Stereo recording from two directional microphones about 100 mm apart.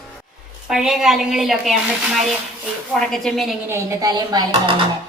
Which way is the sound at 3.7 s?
30° right (ahead or behind).